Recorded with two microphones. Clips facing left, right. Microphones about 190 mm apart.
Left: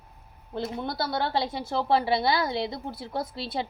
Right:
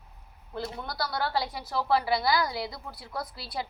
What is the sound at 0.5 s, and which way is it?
A woman's voice, 25° left (ahead or behind).